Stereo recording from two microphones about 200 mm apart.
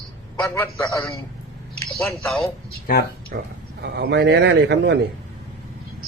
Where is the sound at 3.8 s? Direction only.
60° right (ahead or behind).